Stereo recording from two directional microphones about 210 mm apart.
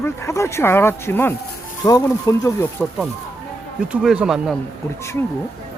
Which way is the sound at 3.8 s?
5° right (ahead or behind).